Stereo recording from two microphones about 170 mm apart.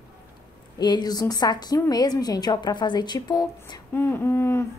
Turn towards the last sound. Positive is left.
turn(degrees=15)  # may be behind; listen again after turning